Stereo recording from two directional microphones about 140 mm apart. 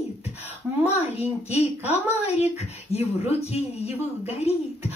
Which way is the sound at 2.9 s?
50° left (ahead or behind).